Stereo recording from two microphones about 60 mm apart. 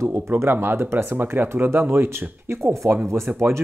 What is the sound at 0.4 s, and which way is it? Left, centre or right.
Speech, right.